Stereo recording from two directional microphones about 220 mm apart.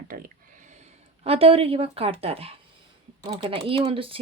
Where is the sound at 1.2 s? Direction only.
25° right (ahead or behind).